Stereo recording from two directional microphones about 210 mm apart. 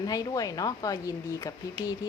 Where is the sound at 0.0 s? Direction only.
15° left (ahead or behind).